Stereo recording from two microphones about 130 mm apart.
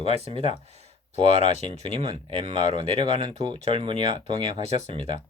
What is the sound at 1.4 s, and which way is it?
Speech, 65° left (ahead or behind).